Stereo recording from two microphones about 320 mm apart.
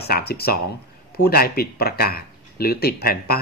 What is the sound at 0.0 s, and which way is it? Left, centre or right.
Speech, left.